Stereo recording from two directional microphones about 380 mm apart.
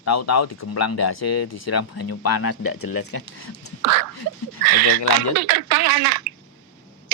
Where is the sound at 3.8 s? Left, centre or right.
Right.